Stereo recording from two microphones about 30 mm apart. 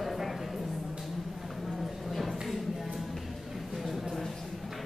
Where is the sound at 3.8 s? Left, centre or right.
Centre.